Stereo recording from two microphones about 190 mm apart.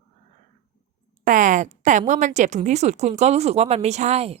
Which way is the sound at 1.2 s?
40° right (ahead or behind).